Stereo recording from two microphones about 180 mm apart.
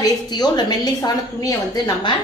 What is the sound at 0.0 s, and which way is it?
A woman's voice, 20° left (ahead or behind).